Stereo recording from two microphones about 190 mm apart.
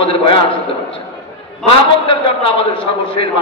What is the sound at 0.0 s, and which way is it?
A man's voice, 30° left (ahead or behind).